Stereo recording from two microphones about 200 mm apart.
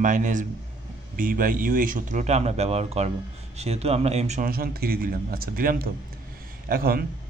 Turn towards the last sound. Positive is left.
turn(degrees=-45)  # may be behind; listen again after turning